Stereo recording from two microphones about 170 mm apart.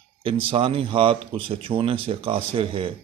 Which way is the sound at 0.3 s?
30° right (ahead or behind).